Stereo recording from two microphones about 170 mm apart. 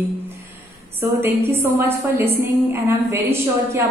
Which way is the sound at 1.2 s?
15° right (ahead or behind).